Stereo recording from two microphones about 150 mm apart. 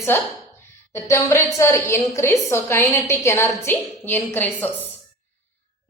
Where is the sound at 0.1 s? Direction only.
15° left (ahead or behind).